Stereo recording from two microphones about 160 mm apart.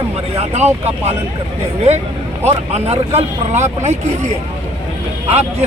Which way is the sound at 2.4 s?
40° right (ahead or behind).